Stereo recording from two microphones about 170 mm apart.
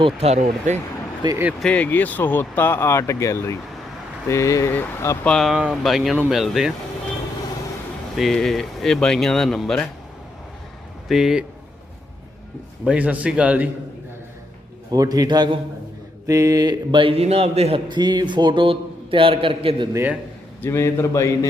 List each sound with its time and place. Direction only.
0.0 s speech: 35° right (ahead or behind)
1.2 s a man's voice: 20° right (ahead or behind)
1.6 s speech: 10° left (ahead or behind)
8.1 s speech: centre (ahead or behind)
11.1 s speech: centre (ahead or behind)
12.8 s a man's voice: 5° right (ahead or behind)
14.9 s a man's voice: 20° right (ahead or behind)
19.9 s a man's voice: 15° right (ahead or behind)
20.6 s speech: 15° left (ahead or behind)